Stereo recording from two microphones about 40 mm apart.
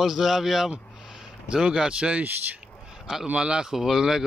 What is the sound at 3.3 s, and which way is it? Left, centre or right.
Speech, right.